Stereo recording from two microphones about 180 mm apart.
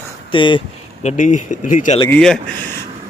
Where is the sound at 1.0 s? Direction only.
45° left (ahead or behind).